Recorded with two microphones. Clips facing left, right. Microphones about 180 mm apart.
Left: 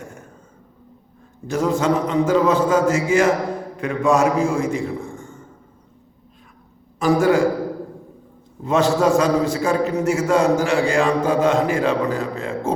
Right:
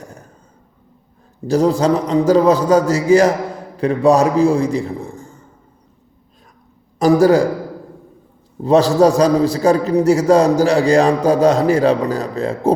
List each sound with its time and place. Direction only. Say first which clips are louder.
0.0 s throat clearing: even; 35° right (ahead or behind)
1.5 s a man's voice: right 5 dB; 35° right (ahead or behind)
7.0 s a man's voice: right 5 dB; 40° right (ahead or behind)
8.6 s a man's voice: right 5 dB; 35° right (ahead or behind)